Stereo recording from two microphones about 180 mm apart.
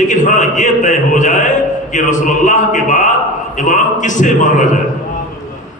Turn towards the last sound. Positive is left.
turn(degrees=45)  # may be behind; listen again after turning